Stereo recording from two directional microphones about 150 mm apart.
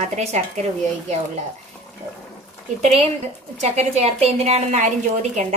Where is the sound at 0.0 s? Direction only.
45° right (ahead or behind).